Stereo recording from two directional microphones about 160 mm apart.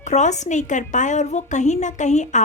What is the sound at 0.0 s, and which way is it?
A woman's voice, 45° left (ahead or behind).